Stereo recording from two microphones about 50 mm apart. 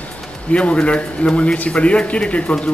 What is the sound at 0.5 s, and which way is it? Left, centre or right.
Speech, left.